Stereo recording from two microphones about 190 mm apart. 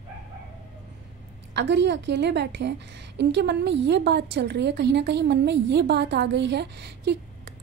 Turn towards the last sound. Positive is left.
turn(degrees=-65)  # may be behind; listen again after turning